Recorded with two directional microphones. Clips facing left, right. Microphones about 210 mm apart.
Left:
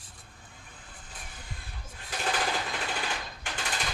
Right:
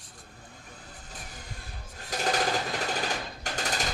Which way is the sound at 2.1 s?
40° right (ahead or behind).